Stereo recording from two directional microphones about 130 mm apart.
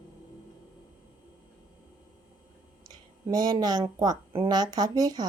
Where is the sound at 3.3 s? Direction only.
30° right (ahead or behind).